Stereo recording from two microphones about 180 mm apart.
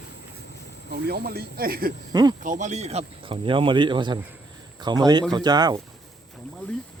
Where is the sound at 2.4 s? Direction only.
45° right (ahead or behind); by 5.8 s 20° right (ahead or behind).